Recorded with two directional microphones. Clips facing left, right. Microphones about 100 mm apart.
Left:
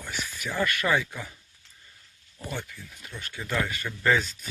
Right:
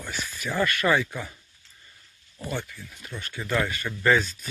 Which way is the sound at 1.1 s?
15° right (ahead or behind).